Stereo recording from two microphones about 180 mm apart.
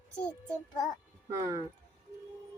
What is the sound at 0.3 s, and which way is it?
Child singing, 5° left (ahead or behind).